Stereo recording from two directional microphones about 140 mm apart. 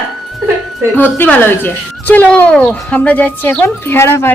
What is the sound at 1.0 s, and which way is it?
A woman's voice, 15° left (ahead or behind).